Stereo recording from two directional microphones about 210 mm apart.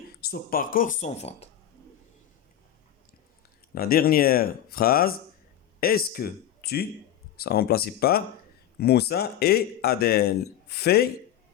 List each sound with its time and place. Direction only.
0.2 s speech: 45° left (ahead or behind)
3.8 s speech: 45° left (ahead or behind)